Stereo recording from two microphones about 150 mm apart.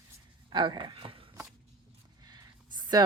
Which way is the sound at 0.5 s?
30° right (ahead or behind).